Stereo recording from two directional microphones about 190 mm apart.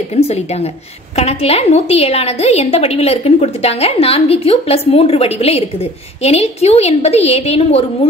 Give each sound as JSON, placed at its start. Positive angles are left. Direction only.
{"t": 0.1, "sound": "a woman's voice", "side_deg": 35}